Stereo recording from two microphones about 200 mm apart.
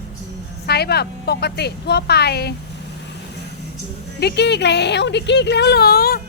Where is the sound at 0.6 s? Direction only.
55° left (ahead or behind).